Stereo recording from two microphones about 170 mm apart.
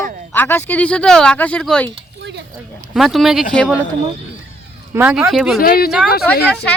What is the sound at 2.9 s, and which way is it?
Speech, centre (ahead or behind).